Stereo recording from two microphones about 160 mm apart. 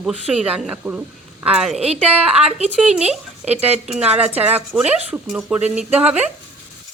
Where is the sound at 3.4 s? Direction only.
40° right (ahead or behind).